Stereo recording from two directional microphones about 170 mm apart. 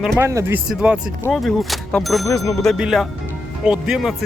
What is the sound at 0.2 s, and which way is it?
Speech, 15° right (ahead or behind).